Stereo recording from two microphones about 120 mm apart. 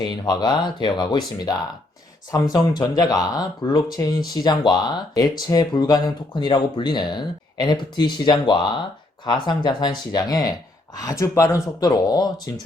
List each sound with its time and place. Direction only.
0.0 s speech: 35° left (ahead or behind)